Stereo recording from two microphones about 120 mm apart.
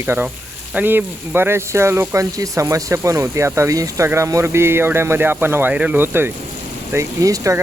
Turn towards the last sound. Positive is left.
turn(degrees=-25)  # may be behind; listen again after turning